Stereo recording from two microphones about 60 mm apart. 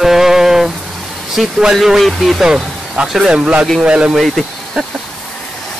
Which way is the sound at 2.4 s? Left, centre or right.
Centre.